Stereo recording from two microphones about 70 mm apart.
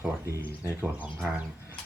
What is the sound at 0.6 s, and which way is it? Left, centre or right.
Speech, right.